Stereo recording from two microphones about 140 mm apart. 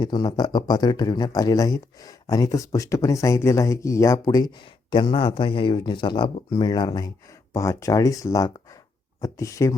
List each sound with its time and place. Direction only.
0.0 s speech: 30° left (ahead or behind)